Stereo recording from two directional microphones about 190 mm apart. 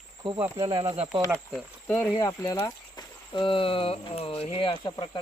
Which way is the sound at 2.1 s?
20° left (ahead or behind).